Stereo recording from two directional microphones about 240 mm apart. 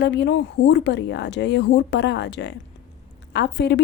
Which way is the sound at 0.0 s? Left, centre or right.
Left.